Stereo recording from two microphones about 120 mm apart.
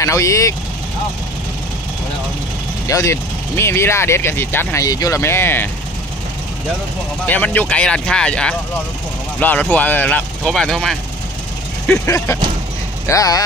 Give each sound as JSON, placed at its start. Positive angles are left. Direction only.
{"t": 0.0, "sound": "speech", "side_deg": 25}
{"t": 2.9, "sound": "speech", "side_deg": 25}
{"t": 4.8, "sound": "speech", "side_deg": 30}
{"t": 7.2, "sound": "speech", "side_deg": 10}
{"t": 13.0, "sound": "speech", "side_deg": 30}